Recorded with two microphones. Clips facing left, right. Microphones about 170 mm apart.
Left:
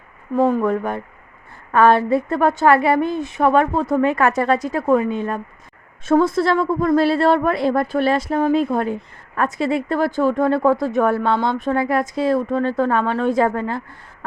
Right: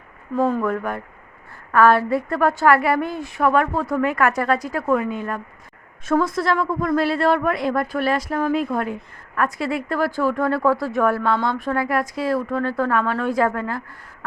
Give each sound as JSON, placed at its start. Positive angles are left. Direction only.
{"t": 0.3, "sound": "speech", "side_deg": 20}